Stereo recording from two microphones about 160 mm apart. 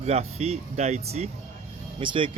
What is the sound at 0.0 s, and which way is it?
Speech, 40° right (ahead or behind).